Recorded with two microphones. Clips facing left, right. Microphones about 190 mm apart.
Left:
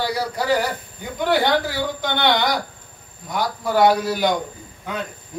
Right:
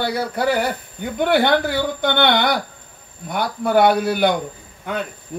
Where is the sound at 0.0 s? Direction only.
60° right (ahead or behind).